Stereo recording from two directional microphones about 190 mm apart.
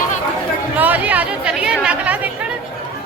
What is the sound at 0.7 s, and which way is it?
Chatter, 10° right (ahead or behind).